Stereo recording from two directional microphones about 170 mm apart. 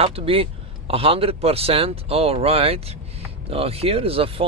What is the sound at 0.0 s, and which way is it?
A man's voice, 35° right (ahead or behind).